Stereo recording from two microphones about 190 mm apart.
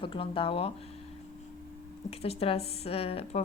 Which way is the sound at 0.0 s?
30° left (ahead or behind).